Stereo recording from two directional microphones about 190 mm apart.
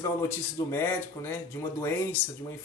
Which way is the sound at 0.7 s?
10° left (ahead or behind).